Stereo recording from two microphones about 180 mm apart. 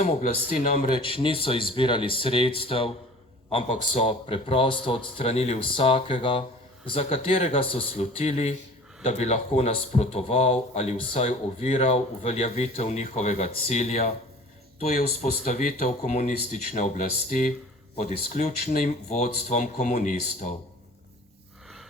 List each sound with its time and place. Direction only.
0.0 s speech: 40° left (ahead or behind)
0.9 s speech: 30° left (ahead or behind)